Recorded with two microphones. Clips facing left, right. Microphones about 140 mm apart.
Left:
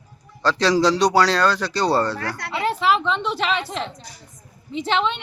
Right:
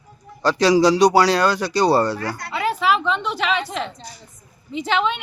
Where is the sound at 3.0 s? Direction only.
Centre (ahead or behind).